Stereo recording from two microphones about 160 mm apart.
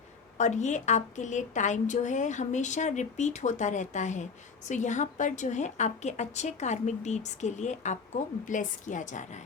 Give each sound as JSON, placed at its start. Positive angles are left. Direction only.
{"t": 0.3, "sound": "a woman's voice", "side_deg": 45}